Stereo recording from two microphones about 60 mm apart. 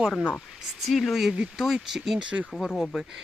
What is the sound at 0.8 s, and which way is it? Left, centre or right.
Speech, centre.